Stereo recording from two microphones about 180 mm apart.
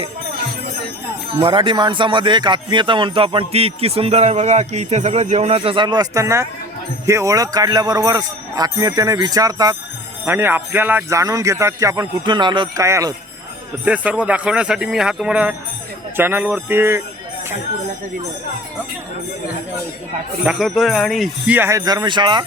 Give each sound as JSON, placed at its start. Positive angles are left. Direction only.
{"t": 1.4, "sound": "a man's voice", "side_deg": -30}
{"t": 13.8, "sound": "a man's voice", "side_deg": -5}
{"t": 20.4, "sound": "a man's voice", "side_deg": -5}